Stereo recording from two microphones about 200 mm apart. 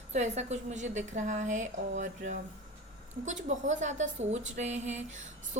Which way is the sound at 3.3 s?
35° right (ahead or behind).